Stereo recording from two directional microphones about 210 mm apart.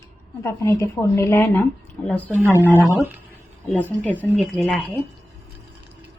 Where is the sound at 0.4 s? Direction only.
15° left (ahead or behind).